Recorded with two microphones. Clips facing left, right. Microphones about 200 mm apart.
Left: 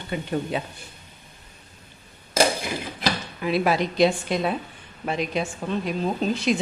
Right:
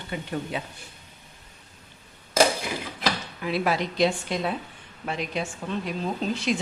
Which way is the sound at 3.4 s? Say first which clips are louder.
Left 5 dB; 15° left (ahead or behind).